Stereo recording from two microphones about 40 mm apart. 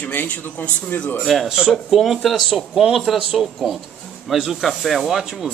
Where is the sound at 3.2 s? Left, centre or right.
Centre.